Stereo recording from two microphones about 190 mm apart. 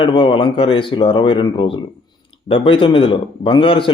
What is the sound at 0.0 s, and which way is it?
A man's voice, 25° left (ahead or behind).